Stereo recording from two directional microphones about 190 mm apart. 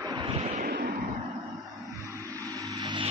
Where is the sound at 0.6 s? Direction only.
55° right (ahead or behind).